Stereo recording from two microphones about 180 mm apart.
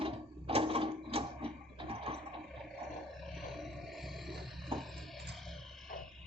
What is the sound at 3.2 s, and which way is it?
Roar, centre (ahead or behind).